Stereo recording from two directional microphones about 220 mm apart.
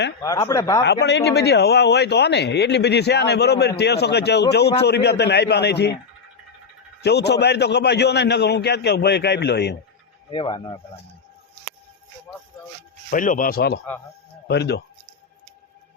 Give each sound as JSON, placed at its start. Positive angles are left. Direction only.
{"t": 0.2, "sound": "speech", "side_deg": 15}
{"t": 1.0, "sound": "a man's voice", "side_deg": 50}
{"t": 7.0, "sound": "a man's voice", "side_deg": 50}
{"t": 10.3, "sound": "speech", "side_deg": 20}
{"t": 13.1, "sound": "speech", "side_deg": 35}